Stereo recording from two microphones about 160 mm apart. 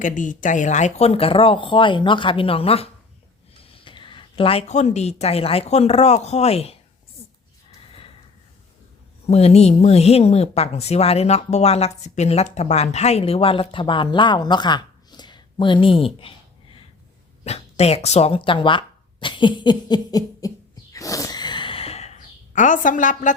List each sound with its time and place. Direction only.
0.0 s a woman's voice: 55° left (ahead or behind)
9.2 s speech: 40° left (ahead or behind)
17.4 s speech: 40° left (ahead or behind); by 20.5 s 25° left (ahead or behind)
20.9 s gasp: 20° left (ahead or behind); by 23.3 s 55° left (ahead or behind)